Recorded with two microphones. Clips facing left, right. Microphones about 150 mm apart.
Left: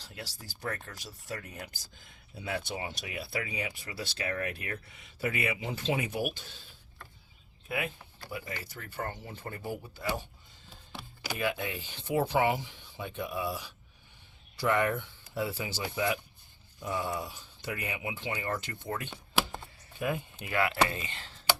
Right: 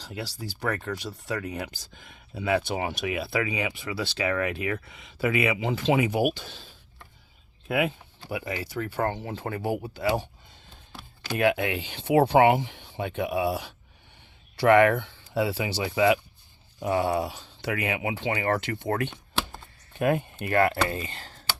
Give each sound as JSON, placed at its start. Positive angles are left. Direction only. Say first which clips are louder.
{"t": 0.0, "sound": "speech", "louder": "right 10 dB", "side_deg": -90}
{"t": 7.7, "sound": "speech", "louder": "right 9 dB", "side_deg": -75}
{"t": 16.8, "sound": "speech", "louder": "right 9 dB", "side_deg": -75}